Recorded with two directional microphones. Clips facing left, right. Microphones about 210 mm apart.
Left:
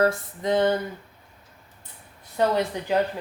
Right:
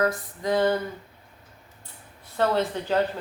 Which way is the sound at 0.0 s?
25° left (ahead or behind).